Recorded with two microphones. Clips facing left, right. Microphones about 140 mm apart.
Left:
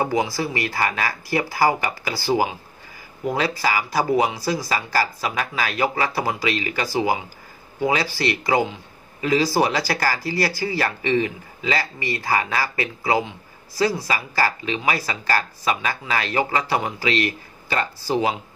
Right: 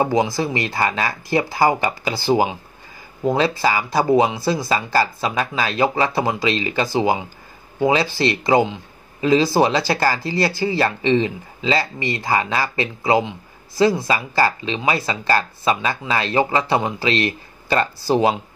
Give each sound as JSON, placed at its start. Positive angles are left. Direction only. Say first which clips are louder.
{"t": 0.0, "sound": "speech", "louder": "right 3 dB", "side_deg": -20}